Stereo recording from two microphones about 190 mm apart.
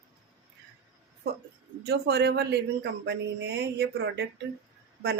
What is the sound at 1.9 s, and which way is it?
Speech, 60° right (ahead or behind).